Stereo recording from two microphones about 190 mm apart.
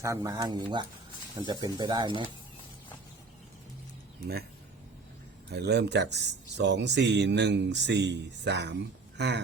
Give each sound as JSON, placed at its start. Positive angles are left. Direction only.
{"t": 0.0, "sound": "speech", "side_deg": -15}
{"t": 5.5, "sound": "speech", "side_deg": -65}